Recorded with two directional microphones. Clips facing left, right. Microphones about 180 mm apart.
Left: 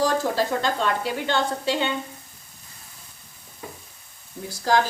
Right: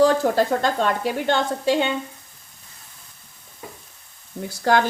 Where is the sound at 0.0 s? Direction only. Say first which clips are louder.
Right 5 dB; 50° right (ahead or behind).